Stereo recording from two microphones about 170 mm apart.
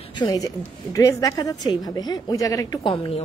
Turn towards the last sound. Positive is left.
turn(degrees=30)  # may be behind; listen again after turning